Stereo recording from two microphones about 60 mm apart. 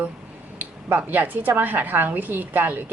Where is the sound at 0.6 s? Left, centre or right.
Right.